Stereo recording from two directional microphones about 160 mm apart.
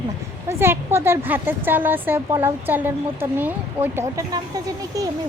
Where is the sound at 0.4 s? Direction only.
15° right (ahead or behind).